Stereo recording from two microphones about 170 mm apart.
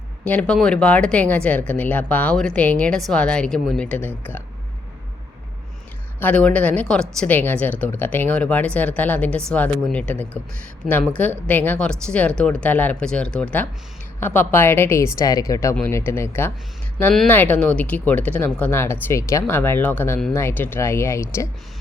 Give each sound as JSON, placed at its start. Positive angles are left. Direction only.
{"t": 0.3, "sound": "speech", "side_deg": 5}
{"t": 6.1, "sound": "speech", "side_deg": 10}
{"t": 11.2, "sound": "speech", "side_deg": 10}